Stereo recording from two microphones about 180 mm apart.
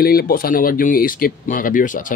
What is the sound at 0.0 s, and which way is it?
Speech, 55° left (ahead or behind).